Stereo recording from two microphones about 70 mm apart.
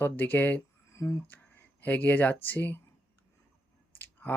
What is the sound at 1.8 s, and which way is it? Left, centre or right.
Speech, left.